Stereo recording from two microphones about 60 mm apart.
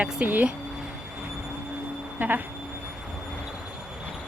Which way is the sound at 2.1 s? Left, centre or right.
Right.